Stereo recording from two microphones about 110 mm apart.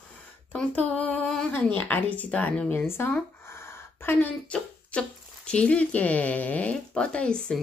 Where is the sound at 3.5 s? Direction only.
25° left (ahead or behind).